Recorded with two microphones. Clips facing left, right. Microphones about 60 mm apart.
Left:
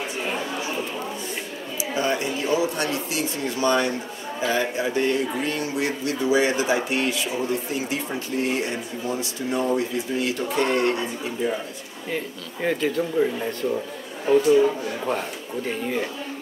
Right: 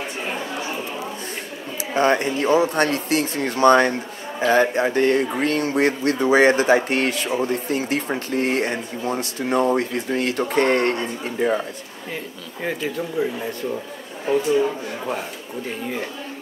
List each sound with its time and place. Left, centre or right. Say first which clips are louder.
1.8 s speech: right 6 dB; right
12.6 s speech: left 2 dB; centre